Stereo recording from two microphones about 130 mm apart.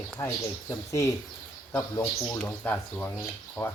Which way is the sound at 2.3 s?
10° left (ahead or behind).